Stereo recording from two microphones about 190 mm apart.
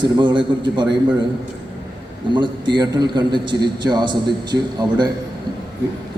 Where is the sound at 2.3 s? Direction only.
25° right (ahead or behind).